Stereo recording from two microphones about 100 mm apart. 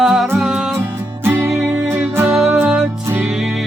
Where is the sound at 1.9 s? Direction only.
25° right (ahead or behind).